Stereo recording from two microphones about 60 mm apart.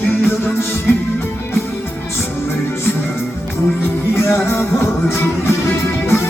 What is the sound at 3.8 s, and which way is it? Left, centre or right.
Music, left.